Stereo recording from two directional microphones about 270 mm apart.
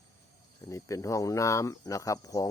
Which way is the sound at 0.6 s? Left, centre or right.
Centre.